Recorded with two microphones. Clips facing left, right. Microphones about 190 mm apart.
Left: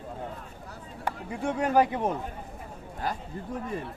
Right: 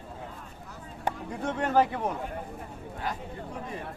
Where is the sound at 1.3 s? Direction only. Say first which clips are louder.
Left 3 dB; 10° left (ahead or behind).